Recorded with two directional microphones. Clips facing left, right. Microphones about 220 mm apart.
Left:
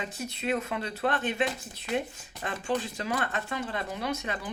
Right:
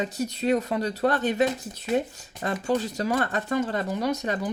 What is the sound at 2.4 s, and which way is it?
Speech, 40° right (ahead or behind).